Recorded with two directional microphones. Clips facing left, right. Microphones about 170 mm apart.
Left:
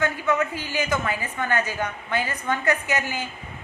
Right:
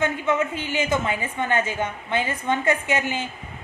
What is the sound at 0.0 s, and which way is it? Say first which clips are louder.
A woman's voice: right 1 dB; 25° right (ahead or behind).